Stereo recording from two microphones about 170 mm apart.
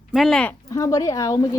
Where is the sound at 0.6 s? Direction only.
20° left (ahead or behind).